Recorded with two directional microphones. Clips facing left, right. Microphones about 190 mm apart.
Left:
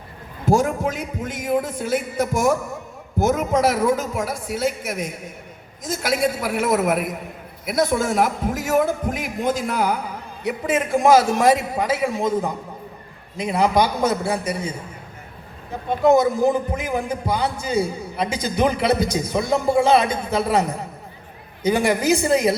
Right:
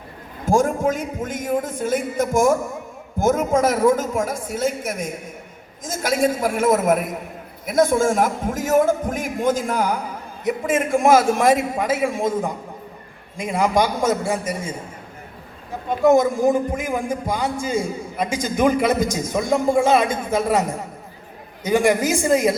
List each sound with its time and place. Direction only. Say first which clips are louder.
0.4 s a man's voice: right 1 dB; 45° right (ahead or behind)
16.0 s a man's voice: right 1 dB; 45° right (ahead or behind)